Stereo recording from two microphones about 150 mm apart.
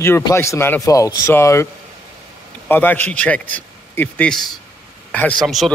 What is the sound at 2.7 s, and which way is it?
Speech, 10° left (ahead or behind).